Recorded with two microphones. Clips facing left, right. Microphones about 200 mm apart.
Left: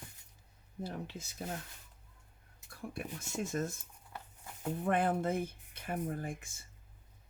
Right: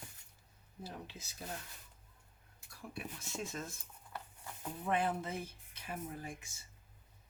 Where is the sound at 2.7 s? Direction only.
50° left (ahead or behind).